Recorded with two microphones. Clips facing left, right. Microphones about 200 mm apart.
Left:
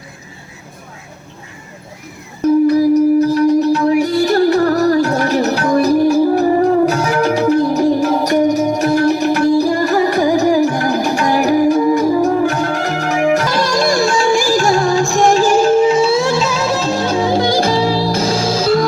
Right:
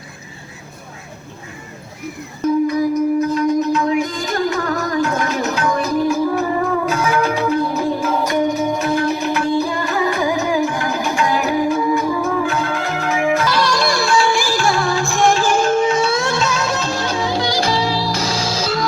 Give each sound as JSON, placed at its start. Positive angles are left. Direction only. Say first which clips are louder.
{"t": 2.4, "sound": "music", "louder": "left 5 dB", "side_deg": 35}
{"t": 17.1, "sound": "music", "louder": "left 6 dB", "side_deg": 50}